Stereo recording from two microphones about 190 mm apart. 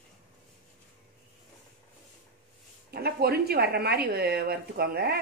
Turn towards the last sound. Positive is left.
turn(degrees=-55)  # may be behind; listen again after turning